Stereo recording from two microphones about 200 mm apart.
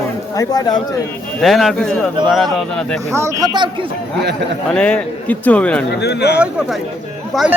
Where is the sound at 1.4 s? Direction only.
Centre (ahead or behind).